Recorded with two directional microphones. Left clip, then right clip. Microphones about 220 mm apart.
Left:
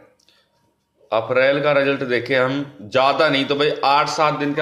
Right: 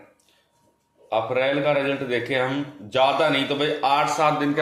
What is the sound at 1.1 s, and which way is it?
A man's voice, 25° left (ahead or behind).